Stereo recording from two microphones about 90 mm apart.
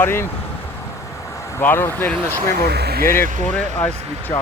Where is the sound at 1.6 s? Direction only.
25° left (ahead or behind).